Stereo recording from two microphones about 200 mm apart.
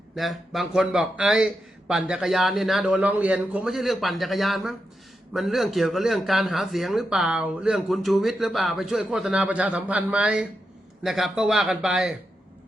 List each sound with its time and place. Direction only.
0.2 s a man's voice: centre (ahead or behind)